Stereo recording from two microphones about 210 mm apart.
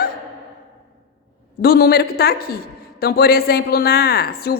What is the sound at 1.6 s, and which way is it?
A woman's voice, 50° left (ahead or behind).